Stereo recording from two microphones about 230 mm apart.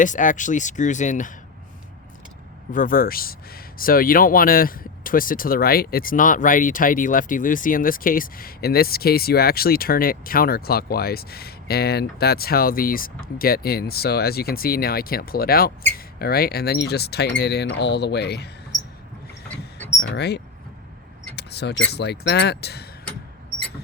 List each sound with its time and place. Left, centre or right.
0.0 s speech: left
2.7 s speech: left
20.0 s speech: left